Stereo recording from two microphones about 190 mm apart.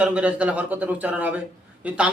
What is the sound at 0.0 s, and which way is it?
A man's voice, 5° right (ahead or behind).